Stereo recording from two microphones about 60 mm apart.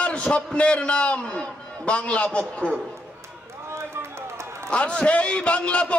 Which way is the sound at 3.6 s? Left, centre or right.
Right.